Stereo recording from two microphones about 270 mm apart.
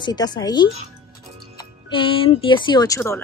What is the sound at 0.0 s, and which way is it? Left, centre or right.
Speech, centre.